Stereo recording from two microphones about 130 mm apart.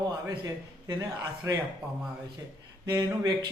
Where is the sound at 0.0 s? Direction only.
30° right (ahead or behind).